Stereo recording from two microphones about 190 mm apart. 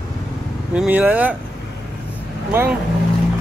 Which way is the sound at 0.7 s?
10° right (ahead or behind).